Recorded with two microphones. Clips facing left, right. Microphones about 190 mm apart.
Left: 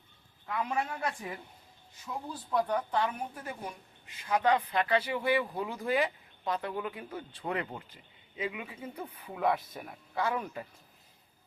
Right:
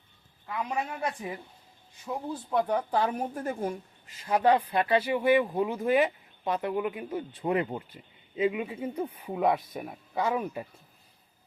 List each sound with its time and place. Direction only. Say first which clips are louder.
0.7 s a woman's voice: right 3 dB; 15° right (ahead or behind); by 4.1 s 45° right (ahead or behind)
4.3 s speech: right 4 dB; 30° right (ahead or behind)